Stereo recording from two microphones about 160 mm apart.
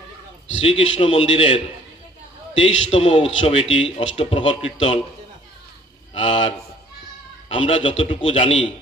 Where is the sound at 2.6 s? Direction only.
35° left (ahead or behind).